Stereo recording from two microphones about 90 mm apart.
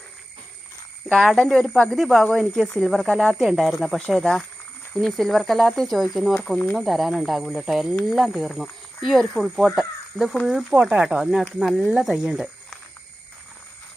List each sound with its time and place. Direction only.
1.0 s speech: centre (ahead or behind)